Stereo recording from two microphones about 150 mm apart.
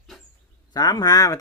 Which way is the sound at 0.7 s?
25° left (ahead or behind).